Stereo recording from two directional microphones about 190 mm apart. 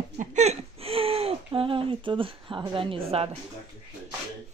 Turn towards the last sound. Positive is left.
turn(degrees=-30)  # may be behind; listen again after turning